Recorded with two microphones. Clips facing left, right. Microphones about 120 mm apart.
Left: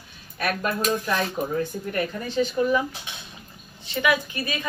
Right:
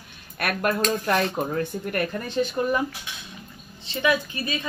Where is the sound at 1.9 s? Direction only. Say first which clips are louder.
Even; 50° right (ahead or behind).